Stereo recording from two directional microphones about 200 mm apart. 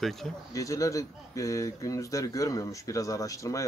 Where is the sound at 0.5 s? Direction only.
15° left (ahead or behind).